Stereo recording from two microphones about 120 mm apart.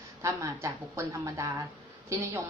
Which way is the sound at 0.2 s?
25° right (ahead or behind).